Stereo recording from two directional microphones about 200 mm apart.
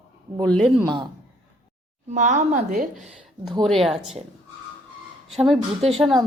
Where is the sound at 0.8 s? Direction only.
20° right (ahead or behind).